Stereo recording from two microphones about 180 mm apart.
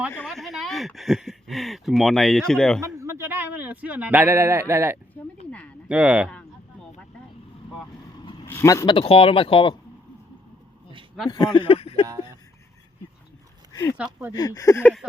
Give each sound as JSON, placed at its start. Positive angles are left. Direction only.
{"t": 0.1, "sound": "speech", "side_deg": 5}
{"t": 2.8, "sound": "speech", "side_deg": -15}
{"t": 5.5, "sound": "a sound", "side_deg": 5}
{"t": 5.9, "sound": "speech", "side_deg": -5}
{"t": 8.4, "sound": "speech", "side_deg": 15}
{"t": 9.0, "sound": "speech", "side_deg": 30}
{"t": 11.3, "sound": "speech", "side_deg": 25}
{"t": 13.9, "sound": "speech", "side_deg": -10}
{"t": 14.3, "sound": "speech", "side_deg": 20}